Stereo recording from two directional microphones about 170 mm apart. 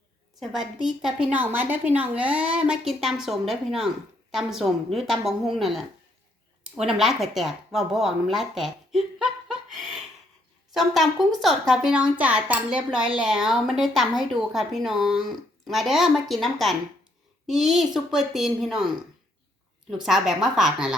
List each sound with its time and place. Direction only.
0.3 s a woman's voice: centre (ahead or behind)
19.9 s speech: centre (ahead or behind)